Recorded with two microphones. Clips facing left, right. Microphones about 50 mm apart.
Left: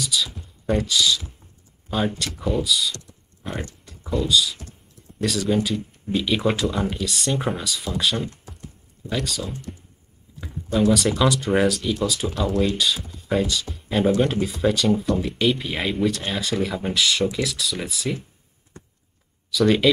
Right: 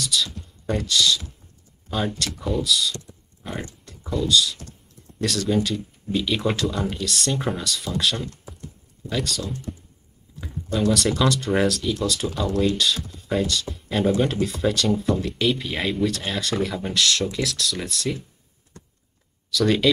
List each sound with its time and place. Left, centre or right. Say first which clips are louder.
0.0 s speech: even; centre
18.8 s a sound: left 2 dB; left
19.5 s speech: left 2 dB; centre